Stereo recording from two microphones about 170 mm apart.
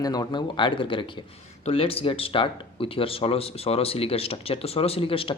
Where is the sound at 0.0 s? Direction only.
25° left (ahead or behind).